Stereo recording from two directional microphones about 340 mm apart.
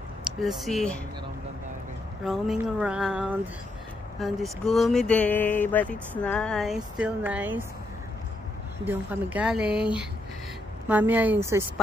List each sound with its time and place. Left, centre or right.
0.2 s speech: centre
2.2 s speech: centre
8.8 s speech: centre